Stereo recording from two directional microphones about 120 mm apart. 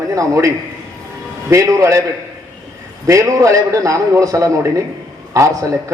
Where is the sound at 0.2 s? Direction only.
25° right (ahead or behind).